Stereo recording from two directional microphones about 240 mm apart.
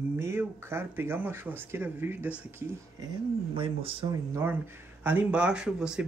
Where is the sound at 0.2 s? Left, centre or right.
Centre.